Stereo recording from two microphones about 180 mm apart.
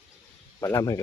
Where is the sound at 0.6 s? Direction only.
20° left (ahead or behind).